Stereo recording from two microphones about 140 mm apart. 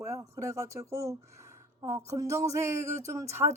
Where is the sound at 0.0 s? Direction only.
20° right (ahead or behind).